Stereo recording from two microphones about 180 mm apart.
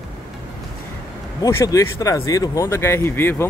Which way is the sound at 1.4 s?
20° left (ahead or behind).